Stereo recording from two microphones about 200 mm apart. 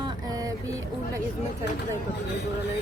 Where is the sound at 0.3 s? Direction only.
15° right (ahead or behind).